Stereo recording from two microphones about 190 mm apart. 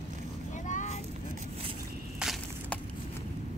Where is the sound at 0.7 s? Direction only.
40° left (ahead or behind).